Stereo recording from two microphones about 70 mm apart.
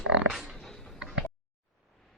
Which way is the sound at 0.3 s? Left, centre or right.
Centre.